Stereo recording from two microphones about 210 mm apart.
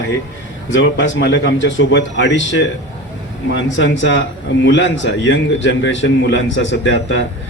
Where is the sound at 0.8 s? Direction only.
60° left (ahead or behind).